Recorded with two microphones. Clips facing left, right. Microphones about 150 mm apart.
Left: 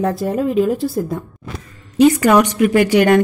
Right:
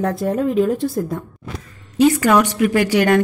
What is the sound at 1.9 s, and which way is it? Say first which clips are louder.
A woman's voice: left 2 dB; 20° left (ahead or behind).